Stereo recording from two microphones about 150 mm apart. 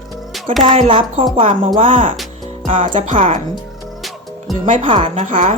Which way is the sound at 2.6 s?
55° right (ahead or behind).